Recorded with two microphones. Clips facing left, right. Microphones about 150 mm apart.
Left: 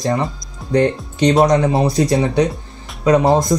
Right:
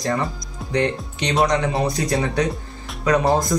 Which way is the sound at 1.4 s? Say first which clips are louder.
Left 1 dB; 30° left (ahead or behind).